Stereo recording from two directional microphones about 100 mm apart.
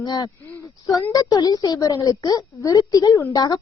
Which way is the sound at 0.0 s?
40° left (ahead or behind).